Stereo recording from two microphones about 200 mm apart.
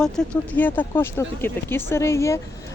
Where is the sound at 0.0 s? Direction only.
5° left (ahead or behind).